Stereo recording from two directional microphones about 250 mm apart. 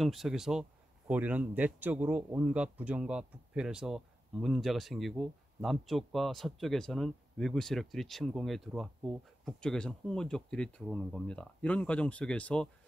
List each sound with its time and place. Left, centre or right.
0.0 s a man's voice: centre